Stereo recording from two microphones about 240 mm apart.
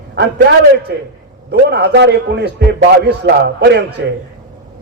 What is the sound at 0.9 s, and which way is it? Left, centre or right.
A man's voice, right.